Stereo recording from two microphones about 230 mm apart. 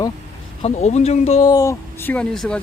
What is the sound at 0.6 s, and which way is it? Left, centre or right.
Speech, left.